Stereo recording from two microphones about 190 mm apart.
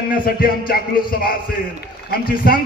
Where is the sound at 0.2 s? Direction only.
50° left (ahead or behind).